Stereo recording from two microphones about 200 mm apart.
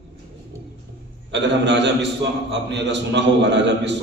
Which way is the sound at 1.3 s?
65° right (ahead or behind).